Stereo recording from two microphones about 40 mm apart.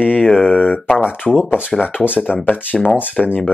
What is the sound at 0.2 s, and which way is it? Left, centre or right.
Speech, left.